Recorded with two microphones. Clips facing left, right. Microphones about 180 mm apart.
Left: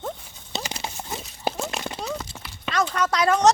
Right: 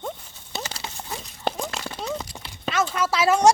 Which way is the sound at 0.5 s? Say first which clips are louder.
Left 2 dB; 20° left (ahead or behind).